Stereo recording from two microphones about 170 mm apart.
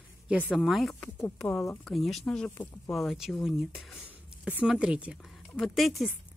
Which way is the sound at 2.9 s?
Centre (ahead or behind).